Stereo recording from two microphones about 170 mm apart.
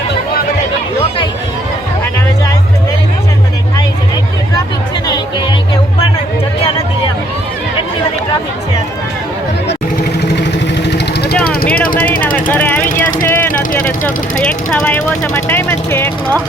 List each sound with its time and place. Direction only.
10.2 s vehicle: 80° left
11.4 s vehicle: 60° left (ahead or behind)
12.0 s vehicle: 10° left (ahead or behind)
13.7 s speech: 10° left (ahead or behind)